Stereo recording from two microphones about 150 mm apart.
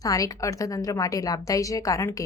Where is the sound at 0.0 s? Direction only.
25° left (ahead or behind).